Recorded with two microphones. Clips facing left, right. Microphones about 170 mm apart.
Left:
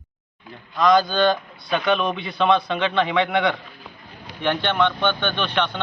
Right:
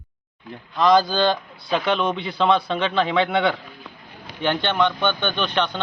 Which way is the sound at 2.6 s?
30° right (ahead or behind).